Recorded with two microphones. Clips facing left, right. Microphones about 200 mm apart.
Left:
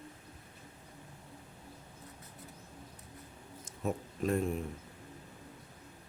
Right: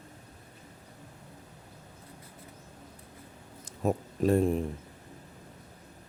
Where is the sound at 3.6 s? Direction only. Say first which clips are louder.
Right 6 dB; 35° right (ahead or behind).